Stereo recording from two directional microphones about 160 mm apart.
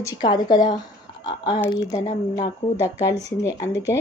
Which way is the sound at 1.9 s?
50° left (ahead or behind).